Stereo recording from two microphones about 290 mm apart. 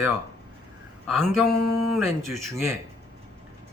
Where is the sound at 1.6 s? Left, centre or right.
Right.